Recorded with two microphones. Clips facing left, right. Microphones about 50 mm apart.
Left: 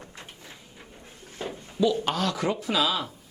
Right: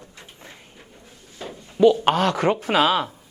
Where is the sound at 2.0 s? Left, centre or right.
Right.